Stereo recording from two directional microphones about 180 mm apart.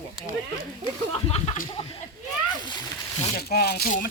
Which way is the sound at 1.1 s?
35° left (ahead or behind).